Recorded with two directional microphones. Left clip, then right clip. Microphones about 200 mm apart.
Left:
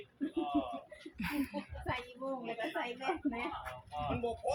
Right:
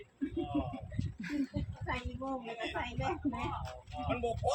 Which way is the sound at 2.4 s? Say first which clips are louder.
Left 1 dB; 40° right (ahead or behind).